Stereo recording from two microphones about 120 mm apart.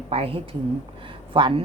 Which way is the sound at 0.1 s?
55° right (ahead or behind).